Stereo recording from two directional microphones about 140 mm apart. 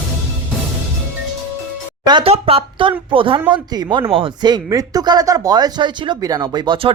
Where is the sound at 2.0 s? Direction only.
30° right (ahead or behind).